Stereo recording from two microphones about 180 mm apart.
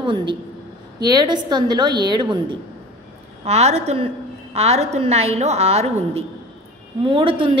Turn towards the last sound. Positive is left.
turn(degrees=-30)  # may be behind; listen again after turning